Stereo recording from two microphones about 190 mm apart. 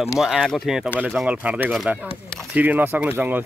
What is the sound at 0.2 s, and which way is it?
Speech, centre (ahead or behind).